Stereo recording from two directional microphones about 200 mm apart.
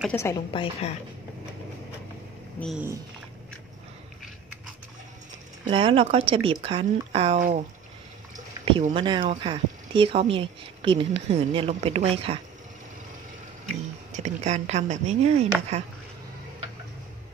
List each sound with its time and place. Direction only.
0.1 s a woman's voice: 15° left (ahead or behind)
0.5 s a woman's voice: 30° left (ahead or behind)
5.7 s speech: 25° right (ahead or behind)
8.6 s speech: 25° right (ahead or behind)
14.1 s speech: 35° right (ahead or behind)